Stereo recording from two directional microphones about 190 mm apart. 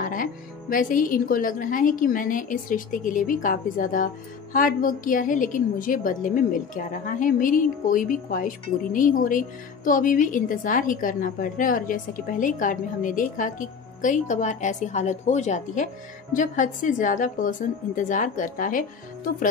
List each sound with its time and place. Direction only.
0.0 s speech: 45° left (ahead or behind)